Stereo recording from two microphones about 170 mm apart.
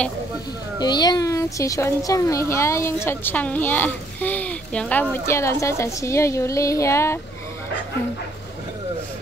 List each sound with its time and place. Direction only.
0.7 s a child's voice: 25° left (ahead or behind)